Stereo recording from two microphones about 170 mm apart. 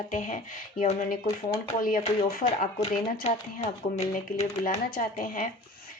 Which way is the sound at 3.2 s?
40° left (ahead or behind).